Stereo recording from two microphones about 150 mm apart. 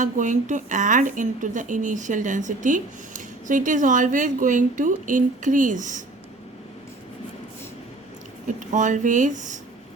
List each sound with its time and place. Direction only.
0.0 s a woman's voice: 55° right (ahead or behind)
8.4 s a woman's voice: 55° right (ahead or behind)